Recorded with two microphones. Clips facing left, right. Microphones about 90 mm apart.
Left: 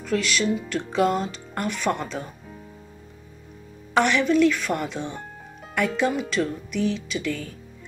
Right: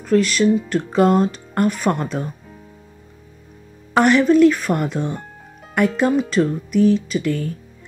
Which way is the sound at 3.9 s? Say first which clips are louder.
Right 6 dB; 45° right (ahead or behind).